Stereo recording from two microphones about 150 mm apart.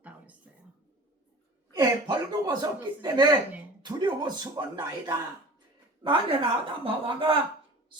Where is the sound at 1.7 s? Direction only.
25° right (ahead or behind).